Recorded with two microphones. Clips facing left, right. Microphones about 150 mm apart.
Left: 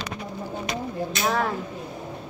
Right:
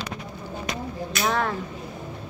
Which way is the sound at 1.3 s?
5° left (ahead or behind).